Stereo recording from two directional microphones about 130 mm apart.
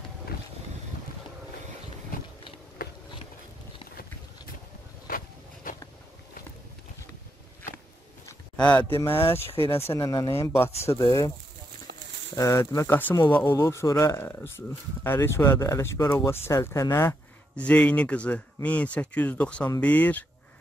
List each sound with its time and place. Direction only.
5.1 s a sound: 90° left
8.5 s speech: 10° left (ahead or behind); by 11.3 s 30° left (ahead or behind)
12.4 s speech: 25° left (ahead or behind)
17.6 s speech: 10° left (ahead or behind)